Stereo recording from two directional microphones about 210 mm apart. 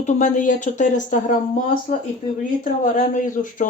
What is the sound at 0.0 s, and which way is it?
Speech, 35° left (ahead or behind).